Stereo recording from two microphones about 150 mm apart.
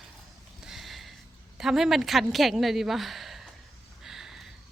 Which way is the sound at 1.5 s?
Centre (ahead or behind).